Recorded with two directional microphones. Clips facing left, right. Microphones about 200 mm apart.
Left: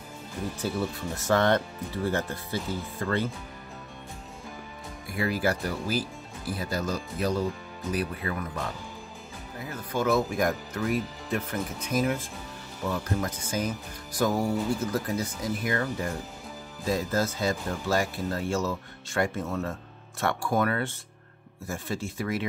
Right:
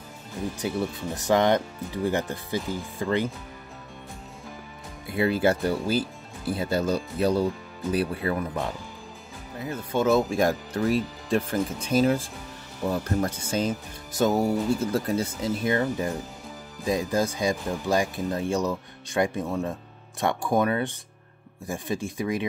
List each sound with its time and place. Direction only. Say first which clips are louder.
0.6 s speech: right 1 dB; 15° right (ahead or behind)
5.1 s speech: right 5 dB; 25° right (ahead or behind)
9.7 s speech: right 4 dB; 25° right (ahead or behind)